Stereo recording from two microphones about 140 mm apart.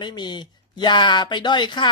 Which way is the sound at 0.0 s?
30° left (ahead or behind).